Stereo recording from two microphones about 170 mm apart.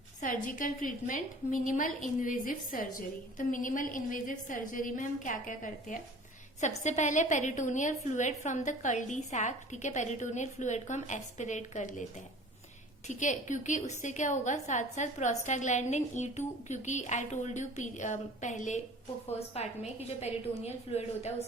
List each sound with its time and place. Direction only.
0.2 s a woman's voice: 50° left (ahead or behind)
13.1 s a woman's voice: 45° left (ahead or behind)